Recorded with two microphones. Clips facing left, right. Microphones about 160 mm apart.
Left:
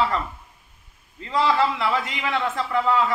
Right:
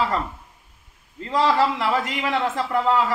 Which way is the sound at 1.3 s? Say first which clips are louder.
Right 1 dB; 40° right (ahead or behind).